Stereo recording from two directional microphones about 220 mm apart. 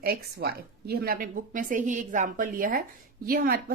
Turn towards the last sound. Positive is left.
turn(degrees=-45)  # may be behind; listen again after turning